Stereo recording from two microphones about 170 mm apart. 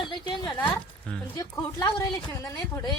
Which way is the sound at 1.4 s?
20° left (ahead or behind).